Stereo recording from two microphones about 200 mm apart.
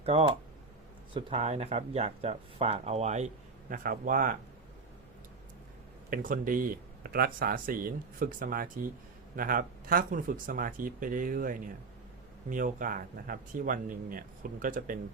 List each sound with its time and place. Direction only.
0.0 s speech: 30° right (ahead or behind)
6.1 s speech: 45° right (ahead or behind)